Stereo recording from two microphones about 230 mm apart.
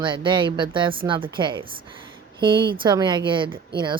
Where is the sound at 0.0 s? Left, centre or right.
Right.